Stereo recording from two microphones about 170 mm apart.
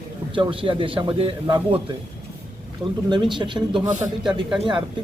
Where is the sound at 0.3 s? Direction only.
30° right (ahead or behind).